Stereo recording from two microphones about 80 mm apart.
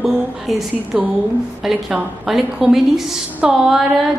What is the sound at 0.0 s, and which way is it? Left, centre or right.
A woman's voice, centre.